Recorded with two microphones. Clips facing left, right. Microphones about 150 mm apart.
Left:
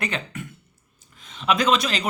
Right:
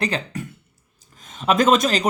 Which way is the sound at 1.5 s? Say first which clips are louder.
Right 4 dB; 45° right (ahead or behind).